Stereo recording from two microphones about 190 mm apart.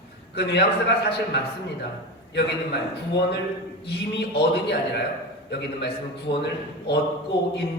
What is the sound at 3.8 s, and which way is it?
Speech, 60° left (ahead or behind).